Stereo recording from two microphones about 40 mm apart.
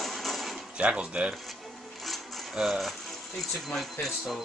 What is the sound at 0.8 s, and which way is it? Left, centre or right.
Speech, right.